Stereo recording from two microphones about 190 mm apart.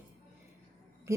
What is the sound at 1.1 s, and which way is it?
Speech, 15° right (ahead or behind).